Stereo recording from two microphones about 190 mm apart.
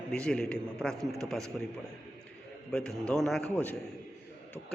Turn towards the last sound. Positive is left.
turn(degrees=5)  # may be behind; listen again after turning